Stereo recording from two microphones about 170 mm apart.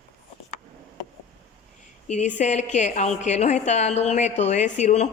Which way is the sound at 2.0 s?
45° left (ahead or behind).